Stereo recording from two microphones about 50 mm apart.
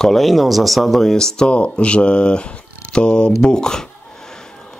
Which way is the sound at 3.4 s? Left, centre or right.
Centre.